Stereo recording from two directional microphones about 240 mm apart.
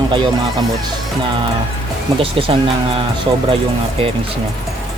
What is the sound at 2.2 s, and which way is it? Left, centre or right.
Speech, right.